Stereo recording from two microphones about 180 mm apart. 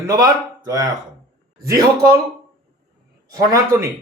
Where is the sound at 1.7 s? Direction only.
20° right (ahead or behind).